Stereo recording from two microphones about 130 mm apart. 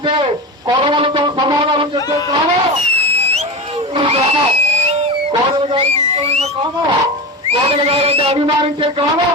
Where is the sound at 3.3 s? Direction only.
55° right (ahead or behind).